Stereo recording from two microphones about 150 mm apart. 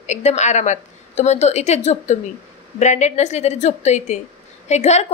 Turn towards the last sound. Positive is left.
turn(degrees=45)  # may be behind; listen again after turning